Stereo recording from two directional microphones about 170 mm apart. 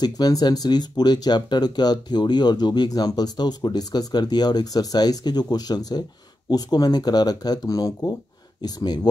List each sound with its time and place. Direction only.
0.0 s speech: 25° left (ahead or behind)